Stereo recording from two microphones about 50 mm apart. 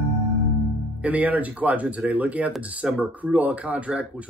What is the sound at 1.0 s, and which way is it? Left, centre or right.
Speech, right.